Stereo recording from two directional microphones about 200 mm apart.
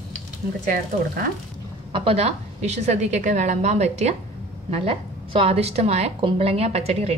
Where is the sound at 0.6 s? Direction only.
45° right (ahead or behind).